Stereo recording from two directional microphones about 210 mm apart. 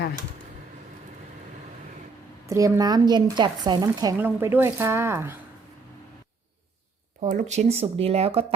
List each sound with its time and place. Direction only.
2.5 s a woman's voice: 15° right (ahead or behind)
7.2 s speech: 35° right (ahead or behind)